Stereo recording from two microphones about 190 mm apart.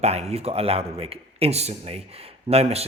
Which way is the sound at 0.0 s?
35° right (ahead or behind).